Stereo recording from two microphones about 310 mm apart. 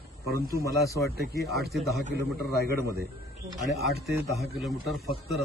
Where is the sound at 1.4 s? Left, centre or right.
Right.